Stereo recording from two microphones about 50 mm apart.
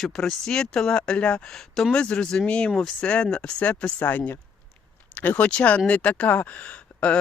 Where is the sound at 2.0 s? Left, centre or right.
Left.